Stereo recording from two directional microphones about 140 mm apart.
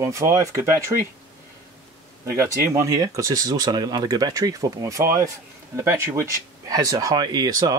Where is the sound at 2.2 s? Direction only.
20° right (ahead or behind).